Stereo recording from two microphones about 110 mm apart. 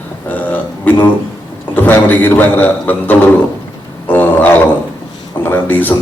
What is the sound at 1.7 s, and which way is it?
A man's voice, 15° left (ahead or behind).